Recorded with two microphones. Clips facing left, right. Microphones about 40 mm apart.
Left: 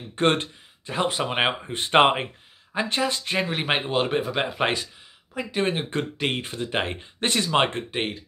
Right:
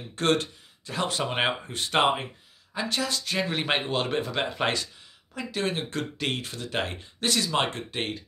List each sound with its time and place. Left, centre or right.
0.1 s speech: left
3.4 s speech: centre